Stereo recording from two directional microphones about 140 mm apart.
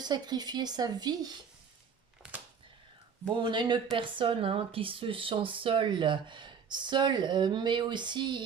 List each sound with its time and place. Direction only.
0.0 s speech: 30° right (ahead or behind)
3.2 s speech: 35° right (ahead or behind)